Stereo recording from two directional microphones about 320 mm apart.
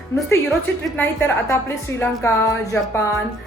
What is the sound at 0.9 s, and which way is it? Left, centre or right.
A woman's voice, centre.